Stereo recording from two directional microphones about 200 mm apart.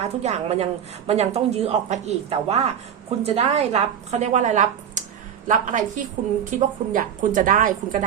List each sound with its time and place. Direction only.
0.0 s a woman's voice: 35° right (ahead or behind)